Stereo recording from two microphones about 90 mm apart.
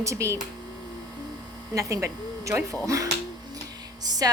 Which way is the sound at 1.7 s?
35° right (ahead or behind).